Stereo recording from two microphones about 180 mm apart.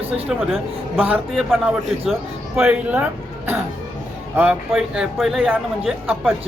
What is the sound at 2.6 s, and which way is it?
Speech, 5° right (ahead or behind).